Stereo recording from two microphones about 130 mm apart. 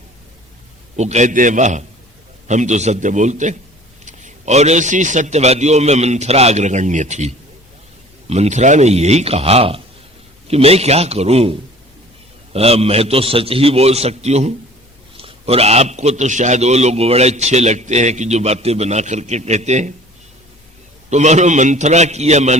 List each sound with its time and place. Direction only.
0.9 s a man's voice: 60° right (ahead or behind)
12.5 s a man's voice: 50° right (ahead or behind)
15.1 s a man's voice: 45° right (ahead or behind); by 19.9 s 60° right (ahead or behind)
21.1 s a man's voice: 60° right (ahead or behind)